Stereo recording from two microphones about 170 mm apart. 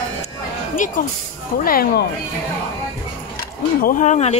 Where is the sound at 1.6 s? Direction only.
60° left (ahead or behind).